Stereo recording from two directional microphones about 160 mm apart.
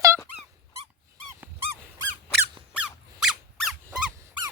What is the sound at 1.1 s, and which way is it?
Dog, 15° right (ahead or behind).